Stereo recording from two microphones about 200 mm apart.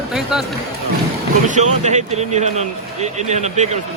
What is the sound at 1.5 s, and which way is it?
A man's voice, 35° right (ahead or behind).